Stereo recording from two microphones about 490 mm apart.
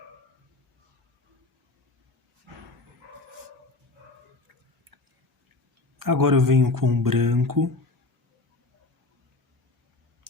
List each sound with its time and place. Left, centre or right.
6.0 s speech: right